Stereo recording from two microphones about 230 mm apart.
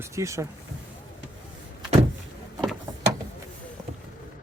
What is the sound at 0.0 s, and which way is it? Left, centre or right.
Speech, centre.